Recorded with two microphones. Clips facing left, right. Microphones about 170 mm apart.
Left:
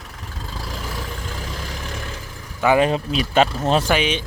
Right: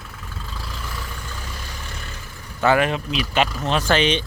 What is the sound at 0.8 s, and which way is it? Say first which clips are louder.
Vehicle: left 4 dB; 90° left.